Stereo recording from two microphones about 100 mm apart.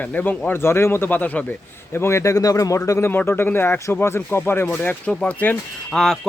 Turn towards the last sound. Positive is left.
turn(degrees=15)  # may be behind; listen again after turning